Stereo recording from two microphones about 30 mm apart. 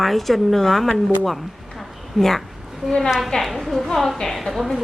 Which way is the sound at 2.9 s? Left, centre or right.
Centre.